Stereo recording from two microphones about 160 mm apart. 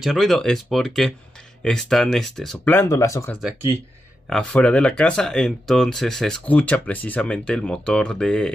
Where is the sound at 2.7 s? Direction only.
20° left (ahead or behind).